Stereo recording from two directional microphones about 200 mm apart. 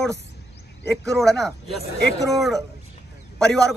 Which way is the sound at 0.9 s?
Centre (ahead or behind).